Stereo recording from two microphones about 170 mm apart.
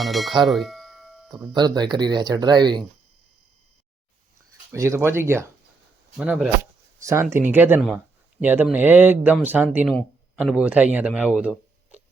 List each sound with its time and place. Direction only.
0.0 s speech: centre (ahead or behind)
1.5 s speech: 25° right (ahead or behind)
4.7 s speech: 15° right (ahead or behind)
7.0 s speech: 20° right (ahead or behind)